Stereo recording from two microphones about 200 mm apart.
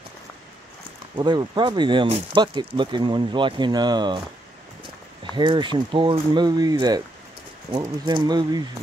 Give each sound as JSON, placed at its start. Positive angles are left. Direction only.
{"t": 1.1, "sound": "speech", "side_deg": -20}
{"t": 5.3, "sound": "speech", "side_deg": -25}